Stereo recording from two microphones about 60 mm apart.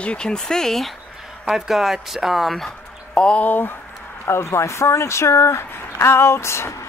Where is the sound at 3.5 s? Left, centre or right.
Left.